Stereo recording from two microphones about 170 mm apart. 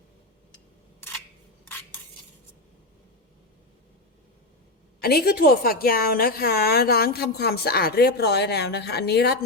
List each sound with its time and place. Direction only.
4.9 s a woman's voice: 65° left (ahead or behind)